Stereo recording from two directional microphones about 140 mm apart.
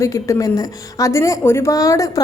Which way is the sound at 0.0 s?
25° left (ahead or behind).